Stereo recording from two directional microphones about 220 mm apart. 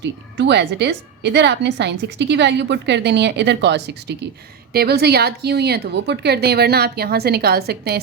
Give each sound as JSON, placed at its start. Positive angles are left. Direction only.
{"t": 0.0, "sound": "a woman's voice", "side_deg": -50}